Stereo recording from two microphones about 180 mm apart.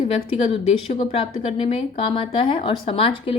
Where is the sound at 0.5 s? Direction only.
30° left (ahead or behind).